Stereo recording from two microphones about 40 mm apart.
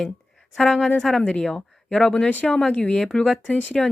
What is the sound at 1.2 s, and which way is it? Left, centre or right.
Speech, left.